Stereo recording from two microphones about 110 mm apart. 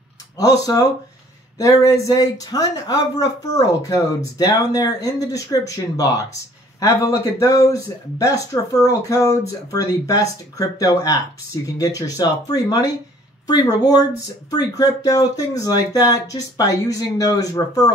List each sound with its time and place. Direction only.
0.4 s speech: 30° left (ahead or behind)